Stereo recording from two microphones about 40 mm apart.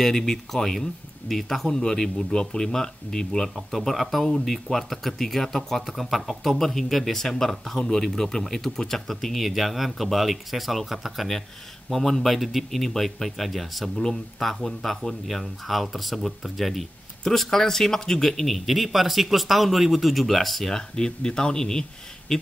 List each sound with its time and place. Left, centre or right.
0.0 s speech: centre
3.4 s speech: centre
5.9 s speech: centre
20.7 s speech: centre